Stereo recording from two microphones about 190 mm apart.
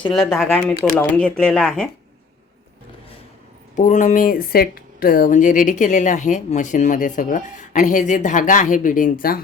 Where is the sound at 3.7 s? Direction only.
40° left (ahead or behind).